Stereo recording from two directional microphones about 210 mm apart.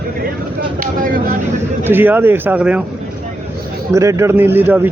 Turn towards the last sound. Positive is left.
turn(degrees=-10)  # may be behind; listen again after turning